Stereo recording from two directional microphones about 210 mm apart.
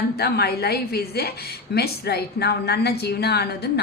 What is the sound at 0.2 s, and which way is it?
A woman's voice, 50° left (ahead or behind).